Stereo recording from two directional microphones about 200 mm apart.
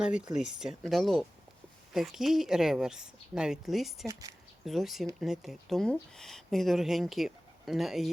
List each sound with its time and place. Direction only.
0.0 s speech: 5° right (ahead or behind)
4.0 s speech: 15° right (ahead or behind)
4.6 s speech: centre (ahead or behind)